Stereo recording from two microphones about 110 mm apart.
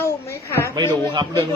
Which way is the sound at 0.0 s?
25° left (ahead or behind).